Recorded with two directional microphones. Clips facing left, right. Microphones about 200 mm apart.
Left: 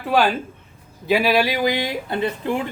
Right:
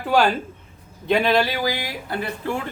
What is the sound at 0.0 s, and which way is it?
Speech, centre (ahead or behind).